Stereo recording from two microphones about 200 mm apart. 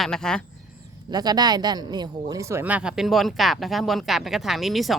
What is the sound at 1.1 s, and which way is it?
Speech, 20° right (ahead or behind).